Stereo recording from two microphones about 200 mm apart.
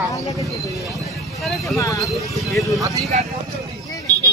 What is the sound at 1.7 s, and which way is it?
Speech, 15° left (ahead or behind).